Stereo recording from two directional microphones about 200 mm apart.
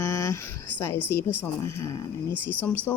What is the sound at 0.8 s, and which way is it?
Speech, 10° left (ahead or behind).